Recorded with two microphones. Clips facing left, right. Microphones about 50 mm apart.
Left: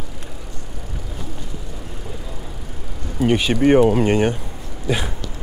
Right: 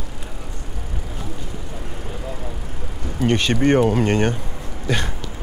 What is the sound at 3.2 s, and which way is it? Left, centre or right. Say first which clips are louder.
Speech: left 2 dB; centre.